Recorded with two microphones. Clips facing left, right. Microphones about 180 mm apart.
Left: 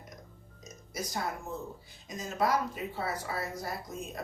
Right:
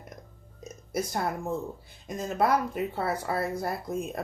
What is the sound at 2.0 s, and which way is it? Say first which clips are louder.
Speech: right 4 dB; 55° right (ahead or behind).